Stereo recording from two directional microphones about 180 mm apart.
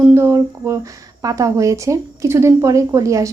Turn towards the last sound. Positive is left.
turn(degrees=-15)  # may be behind; listen again after turning